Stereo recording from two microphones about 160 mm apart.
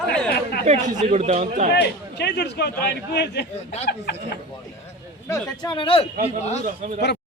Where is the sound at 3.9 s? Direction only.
75° left (ahead or behind).